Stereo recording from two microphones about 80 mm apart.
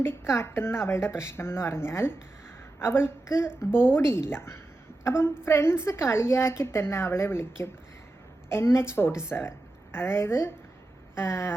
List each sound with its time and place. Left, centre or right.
0.0 s a woman's voice: left